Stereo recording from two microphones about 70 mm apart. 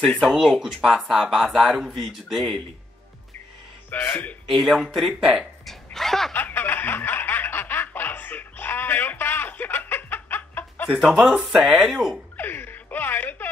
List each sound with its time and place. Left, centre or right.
0.2 s speech: centre
3.9 s speech: left
4.5 s speech: centre
5.4 s a sound: centre
6.3 s a sound: left
10.9 s speech: centre
12.4 s music: left